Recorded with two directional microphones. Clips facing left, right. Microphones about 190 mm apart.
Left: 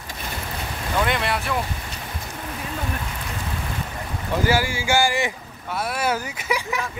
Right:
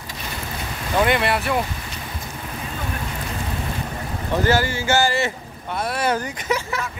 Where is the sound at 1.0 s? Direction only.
5° right (ahead or behind).